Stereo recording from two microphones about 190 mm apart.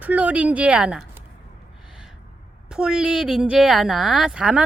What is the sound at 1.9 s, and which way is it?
Gasp, 5° right (ahead or behind).